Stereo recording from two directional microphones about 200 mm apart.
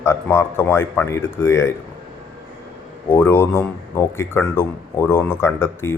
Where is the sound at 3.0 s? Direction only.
10° left (ahead or behind).